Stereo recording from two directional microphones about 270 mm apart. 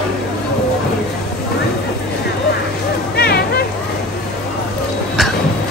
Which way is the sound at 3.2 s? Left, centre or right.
Left.